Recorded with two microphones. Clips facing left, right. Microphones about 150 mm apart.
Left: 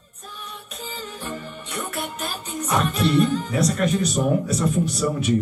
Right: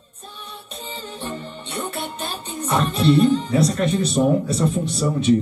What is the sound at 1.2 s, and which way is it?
Music, 30° right (ahead or behind).